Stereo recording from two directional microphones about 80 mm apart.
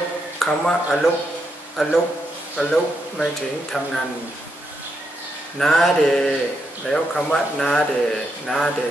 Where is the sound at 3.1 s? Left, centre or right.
Centre.